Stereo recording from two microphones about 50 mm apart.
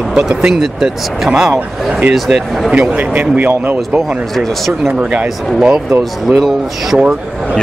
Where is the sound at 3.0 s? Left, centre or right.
Right.